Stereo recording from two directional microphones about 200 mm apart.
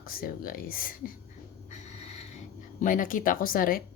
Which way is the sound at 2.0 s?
35° left (ahead or behind).